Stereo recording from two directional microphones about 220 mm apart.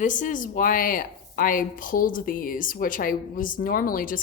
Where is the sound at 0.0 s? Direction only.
35° left (ahead or behind).